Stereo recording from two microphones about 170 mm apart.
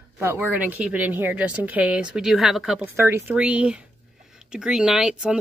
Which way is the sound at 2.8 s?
15° right (ahead or behind).